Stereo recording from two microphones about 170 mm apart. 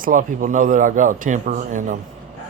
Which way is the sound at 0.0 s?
50° right (ahead or behind).